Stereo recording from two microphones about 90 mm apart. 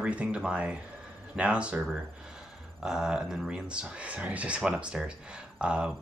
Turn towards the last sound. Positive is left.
turn(degrees=-10)  # may be behind; listen again after turning